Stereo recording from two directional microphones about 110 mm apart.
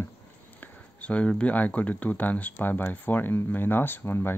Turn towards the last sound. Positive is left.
turn(degrees=20)  # may be behind; listen again after turning